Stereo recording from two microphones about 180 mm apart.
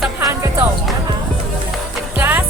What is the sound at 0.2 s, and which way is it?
Music, 15° right (ahead or behind).